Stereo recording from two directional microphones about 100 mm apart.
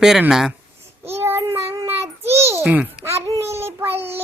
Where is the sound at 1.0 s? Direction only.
25° right (ahead or behind).